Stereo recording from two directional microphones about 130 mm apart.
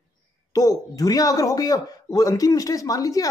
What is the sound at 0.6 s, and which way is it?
Speech, 30° left (ahead or behind).